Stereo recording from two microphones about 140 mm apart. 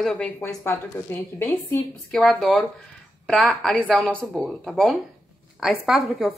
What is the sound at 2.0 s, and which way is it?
A woman's voice, 5° left (ahead or behind).